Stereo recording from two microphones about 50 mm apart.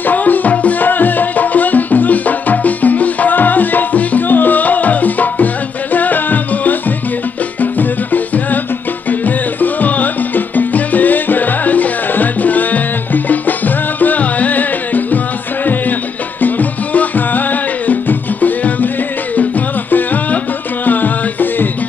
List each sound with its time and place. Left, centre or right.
0.0 s music: left
16.3 s music: left
19.9 s music: left